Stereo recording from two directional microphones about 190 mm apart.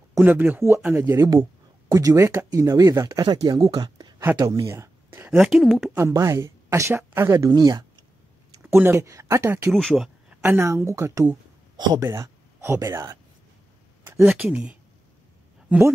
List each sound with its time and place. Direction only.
0.1 s speech: 10° right (ahead or behind)
5.9 s speech: 15° right (ahead or behind)
9.7 s speech: centre (ahead or behind); by 13.2 s 15° right (ahead or behind)
14.0 s a sound: 10° right (ahead or behind)
14.3 s speech: 5° right (ahead or behind)